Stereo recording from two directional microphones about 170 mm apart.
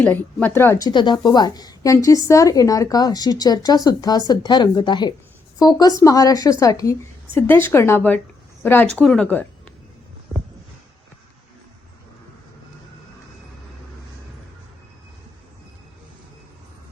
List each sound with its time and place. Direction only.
0.0 s a woman's voice: 10° left (ahead or behind)